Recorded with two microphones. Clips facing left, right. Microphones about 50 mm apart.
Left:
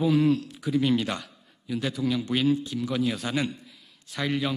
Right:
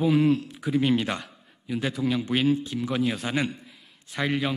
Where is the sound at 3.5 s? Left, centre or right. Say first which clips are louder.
Right 1 dB; right.